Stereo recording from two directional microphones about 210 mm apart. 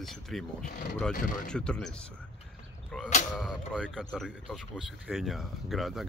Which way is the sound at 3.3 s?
Centre (ahead or behind).